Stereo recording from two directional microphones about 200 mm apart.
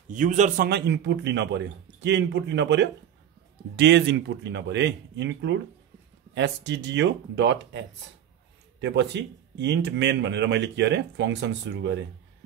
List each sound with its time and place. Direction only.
0.1 s a man's voice: 40° right (ahead or behind)
0.7 s speech: 60° right (ahead or behind)
8.8 s speech: 60° right (ahead or behind)